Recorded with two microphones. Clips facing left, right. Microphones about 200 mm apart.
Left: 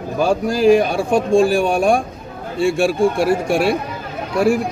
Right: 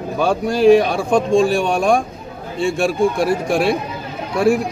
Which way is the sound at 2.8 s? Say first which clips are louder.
Even; 30° left (ahead or behind).